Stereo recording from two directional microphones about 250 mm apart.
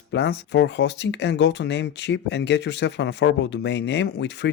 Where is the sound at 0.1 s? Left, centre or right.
Left.